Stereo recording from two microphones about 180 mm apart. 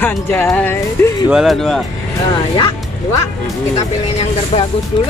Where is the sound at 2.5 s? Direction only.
25° left (ahead or behind).